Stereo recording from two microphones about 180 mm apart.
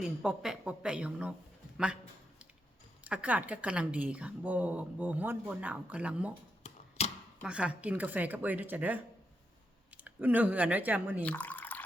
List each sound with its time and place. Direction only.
0.0 s speech: 5° right (ahead or behind)
3.0 s a woman's voice: 5° right (ahead or behind)
6.6 s a sound: 40° left (ahead or behind)
7.4 s a woman's voice: 5° right (ahead or behind)
11.2 s drip: 10° left (ahead or behind)